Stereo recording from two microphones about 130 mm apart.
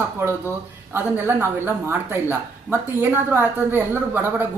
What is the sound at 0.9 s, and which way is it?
Speech, 15° right (ahead or behind).